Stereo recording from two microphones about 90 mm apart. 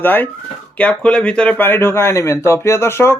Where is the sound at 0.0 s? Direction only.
20° left (ahead or behind).